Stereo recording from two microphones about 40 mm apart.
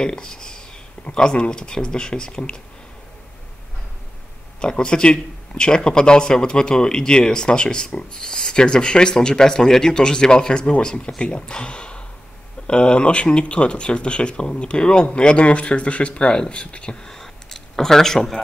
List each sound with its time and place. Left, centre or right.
0.0 s speech: centre
4.6 s speech: centre
16.9 s a sound: centre